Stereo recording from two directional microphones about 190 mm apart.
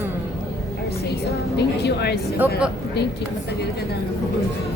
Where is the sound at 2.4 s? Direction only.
10° right (ahead or behind).